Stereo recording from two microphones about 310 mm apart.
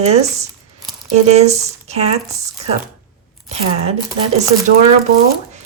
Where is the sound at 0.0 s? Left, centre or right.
Right.